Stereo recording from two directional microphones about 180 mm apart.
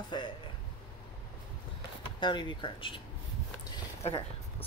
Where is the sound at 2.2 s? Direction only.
25° left (ahead or behind).